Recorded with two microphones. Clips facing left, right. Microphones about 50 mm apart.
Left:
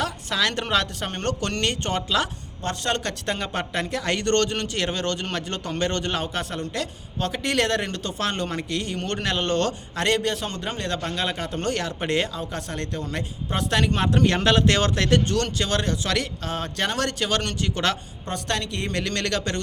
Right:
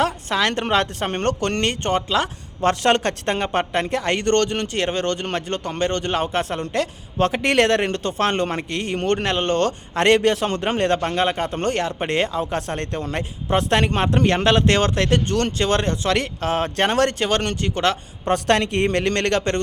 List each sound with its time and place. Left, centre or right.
0.3 s speech: right
2.6 s speech: right
3.3 s speech: right
6.3 s speech: right
9.1 s speech: right
10.0 s speech: right
12.4 s speech: right
18.3 s speech: right